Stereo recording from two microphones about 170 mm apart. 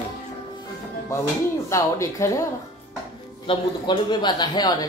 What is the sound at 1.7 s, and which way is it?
Speech, 20° left (ahead or behind).